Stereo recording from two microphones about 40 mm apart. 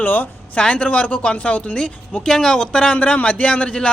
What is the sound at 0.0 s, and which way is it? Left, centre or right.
Speech, left.